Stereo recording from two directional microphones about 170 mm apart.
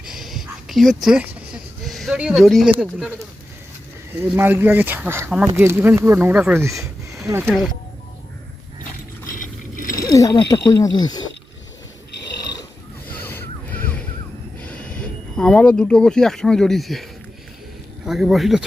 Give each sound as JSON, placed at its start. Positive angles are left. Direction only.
{"t": 0.0, "sound": "a sound", "side_deg": 0}
{"t": 2.8, "sound": "speech", "side_deg": 5}
{"t": 4.2, "sound": "speech", "side_deg": -10}
{"t": 7.4, "sound": "speech", "side_deg": 0}
{"t": 10.0, "sound": "speech", "side_deg": 20}
{"t": 13.1, "sound": "a sound", "side_deg": 10}
{"t": 14.6, "sound": "speech", "side_deg": 5}